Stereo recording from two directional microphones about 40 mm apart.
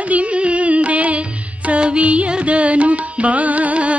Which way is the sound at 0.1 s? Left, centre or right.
Right.